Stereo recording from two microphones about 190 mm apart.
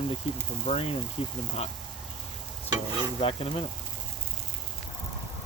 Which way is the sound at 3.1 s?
30° left (ahead or behind).